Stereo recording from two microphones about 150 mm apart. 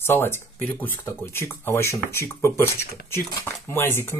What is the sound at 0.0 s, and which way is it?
Speech, 15° left (ahead or behind).